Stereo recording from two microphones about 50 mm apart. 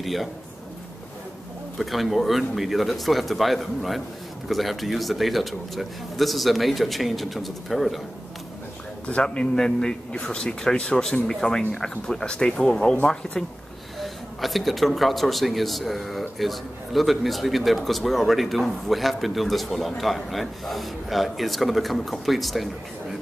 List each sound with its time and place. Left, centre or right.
0.0 s speech: centre
1.8 s speech: centre
9.0 s a man's voice: left
13.9 s speech: centre